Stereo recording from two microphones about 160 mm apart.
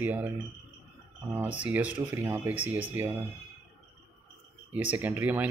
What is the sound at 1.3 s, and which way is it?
Speech, 10° right (ahead or behind).